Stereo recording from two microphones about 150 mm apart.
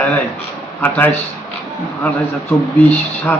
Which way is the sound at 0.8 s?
15° left (ahead or behind).